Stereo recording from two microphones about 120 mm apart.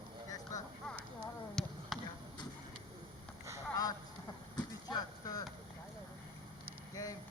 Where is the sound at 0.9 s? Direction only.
5° left (ahead or behind).